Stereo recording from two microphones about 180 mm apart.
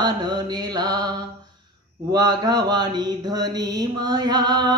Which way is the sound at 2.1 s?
20° right (ahead or behind).